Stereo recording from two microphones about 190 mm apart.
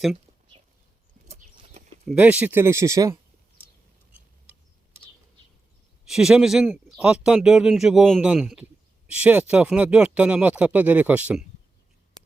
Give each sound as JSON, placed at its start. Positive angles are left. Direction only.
{"t": 1.3, "sound": "a sound", "side_deg": -40}
{"t": 2.1, "sound": "speech", "side_deg": -10}
{"t": 6.1, "sound": "a man's voice", "side_deg": -5}